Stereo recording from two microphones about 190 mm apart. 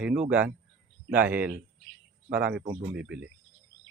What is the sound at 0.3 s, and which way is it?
Speech, 10° right (ahead or behind).